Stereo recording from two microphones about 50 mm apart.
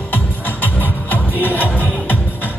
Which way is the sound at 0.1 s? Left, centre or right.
Left.